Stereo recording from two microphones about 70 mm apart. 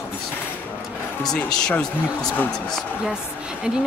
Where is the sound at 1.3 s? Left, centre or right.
Centre.